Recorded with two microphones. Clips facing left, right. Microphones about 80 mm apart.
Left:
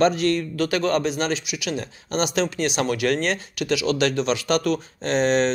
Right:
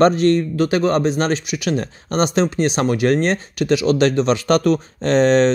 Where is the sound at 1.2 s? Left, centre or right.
Right.